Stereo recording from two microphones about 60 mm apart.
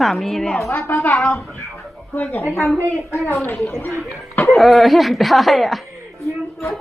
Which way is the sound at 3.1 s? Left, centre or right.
Left.